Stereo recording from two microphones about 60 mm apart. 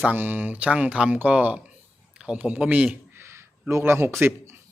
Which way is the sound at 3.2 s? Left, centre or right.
Right.